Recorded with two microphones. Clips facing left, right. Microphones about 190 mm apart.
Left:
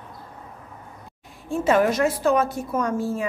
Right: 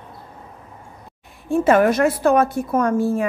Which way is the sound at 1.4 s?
55° right (ahead or behind).